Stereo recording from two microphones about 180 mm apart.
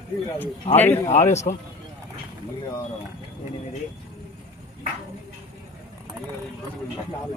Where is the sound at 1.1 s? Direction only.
40° left (ahead or behind).